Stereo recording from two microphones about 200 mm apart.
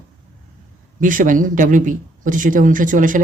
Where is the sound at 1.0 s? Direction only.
40° right (ahead or behind).